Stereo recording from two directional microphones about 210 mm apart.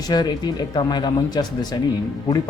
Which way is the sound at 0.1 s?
20° left (ahead or behind).